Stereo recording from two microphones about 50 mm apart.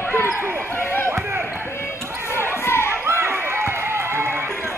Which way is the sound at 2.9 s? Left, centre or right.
Right.